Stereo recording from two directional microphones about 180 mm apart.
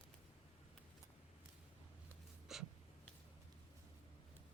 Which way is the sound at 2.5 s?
Centre (ahead or behind).